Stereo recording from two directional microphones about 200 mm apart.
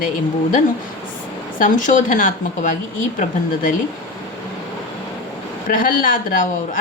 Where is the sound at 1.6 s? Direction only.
40° left (ahead or behind).